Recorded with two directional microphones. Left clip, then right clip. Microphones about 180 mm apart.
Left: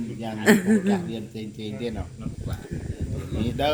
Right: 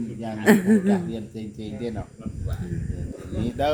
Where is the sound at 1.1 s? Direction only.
55° right (ahead or behind).